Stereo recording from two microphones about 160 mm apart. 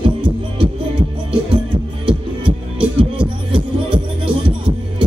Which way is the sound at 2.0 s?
30° right (ahead or behind).